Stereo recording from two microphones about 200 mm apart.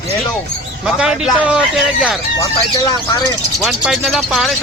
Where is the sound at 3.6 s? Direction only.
Centre (ahead or behind).